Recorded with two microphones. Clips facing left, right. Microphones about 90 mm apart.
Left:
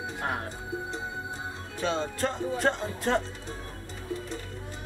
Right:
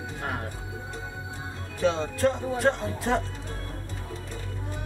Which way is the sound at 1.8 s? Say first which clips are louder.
Right 4 dB; centre (ahead or behind).